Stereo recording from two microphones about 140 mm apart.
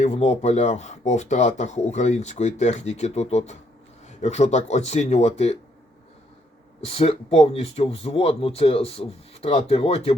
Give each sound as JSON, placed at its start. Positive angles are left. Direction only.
{"t": 0.0, "sound": "speech", "side_deg": 50}
{"t": 6.8, "sound": "speech", "side_deg": 45}